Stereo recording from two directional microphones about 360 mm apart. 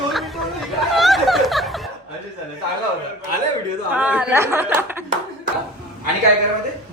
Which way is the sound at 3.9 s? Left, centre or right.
Centre.